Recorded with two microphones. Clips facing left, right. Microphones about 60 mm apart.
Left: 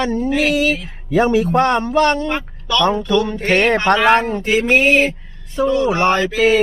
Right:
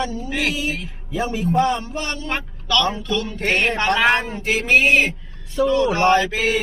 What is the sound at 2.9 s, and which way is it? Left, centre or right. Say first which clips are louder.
Speech: left 8 dB; left.